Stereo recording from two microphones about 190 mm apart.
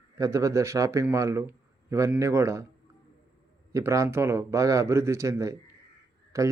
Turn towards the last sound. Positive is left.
turn(degrees=-15)  # may be behind; listen again after turning